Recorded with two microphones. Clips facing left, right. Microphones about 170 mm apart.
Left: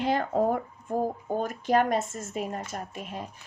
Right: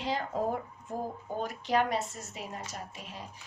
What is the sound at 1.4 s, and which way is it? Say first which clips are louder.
A woman's voice: left 4 dB; 50° left (ahead or behind).